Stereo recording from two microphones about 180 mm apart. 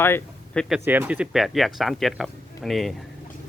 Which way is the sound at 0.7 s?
10° right (ahead or behind).